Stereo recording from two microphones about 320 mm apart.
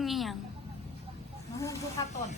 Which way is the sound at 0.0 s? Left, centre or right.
Centre.